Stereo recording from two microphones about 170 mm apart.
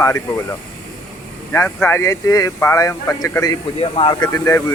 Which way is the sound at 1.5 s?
15° left (ahead or behind).